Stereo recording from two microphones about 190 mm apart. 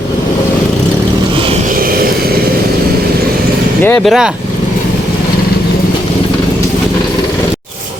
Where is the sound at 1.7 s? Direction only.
50° right (ahead or behind).